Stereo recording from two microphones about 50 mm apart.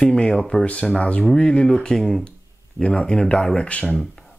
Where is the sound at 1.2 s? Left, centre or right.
Centre.